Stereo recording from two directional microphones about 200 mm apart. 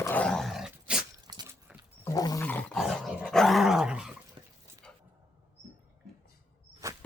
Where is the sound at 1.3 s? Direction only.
20° right (ahead or behind).